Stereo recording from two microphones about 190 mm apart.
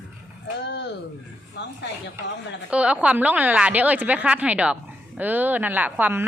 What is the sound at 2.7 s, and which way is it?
A woman's voice, 5° right (ahead or behind).